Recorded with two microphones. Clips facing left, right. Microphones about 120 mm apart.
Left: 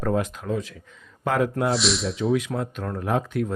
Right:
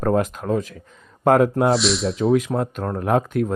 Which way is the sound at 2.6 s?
45° right (ahead or behind).